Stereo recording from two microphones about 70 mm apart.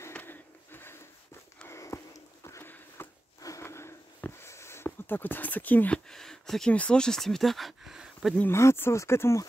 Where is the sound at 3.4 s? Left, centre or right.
Left.